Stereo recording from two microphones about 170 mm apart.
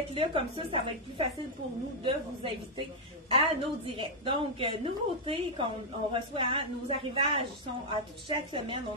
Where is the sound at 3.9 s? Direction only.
30° right (ahead or behind).